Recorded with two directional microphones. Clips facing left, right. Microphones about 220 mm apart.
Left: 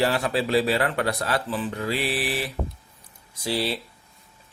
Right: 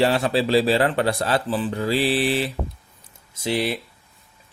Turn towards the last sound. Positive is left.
turn(degrees=-20)  # may be behind; listen again after turning